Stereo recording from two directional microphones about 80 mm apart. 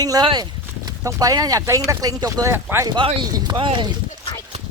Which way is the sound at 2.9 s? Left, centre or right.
Right.